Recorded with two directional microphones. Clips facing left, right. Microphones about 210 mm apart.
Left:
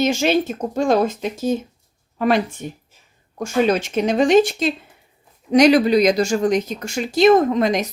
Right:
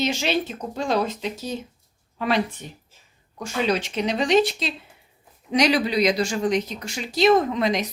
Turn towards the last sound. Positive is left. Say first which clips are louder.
# left 5 dB
turn(degrees=45)  # may be behind; listen again after turning